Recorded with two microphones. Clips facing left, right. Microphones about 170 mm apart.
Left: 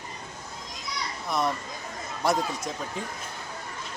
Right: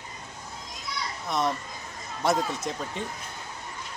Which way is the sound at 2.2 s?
Centre (ahead or behind).